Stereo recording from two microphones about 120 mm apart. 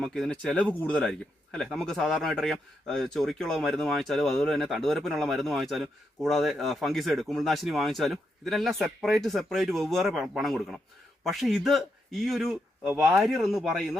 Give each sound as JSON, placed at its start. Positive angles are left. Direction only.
{"t": 0.0, "sound": "a man's voice", "side_deg": 5}